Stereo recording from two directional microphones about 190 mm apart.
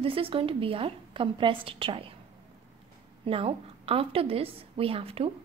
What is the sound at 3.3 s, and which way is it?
A woman's voice, 30° right (ahead or behind).